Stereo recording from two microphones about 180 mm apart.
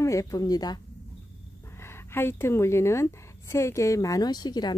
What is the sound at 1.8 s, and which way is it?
A woman's voice, 15° left (ahead or behind).